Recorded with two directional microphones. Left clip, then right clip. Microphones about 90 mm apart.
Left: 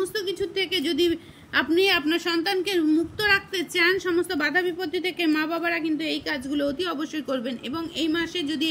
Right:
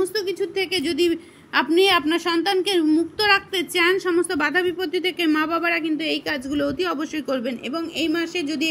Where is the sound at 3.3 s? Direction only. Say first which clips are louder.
Right 3 dB; 30° right (ahead or behind).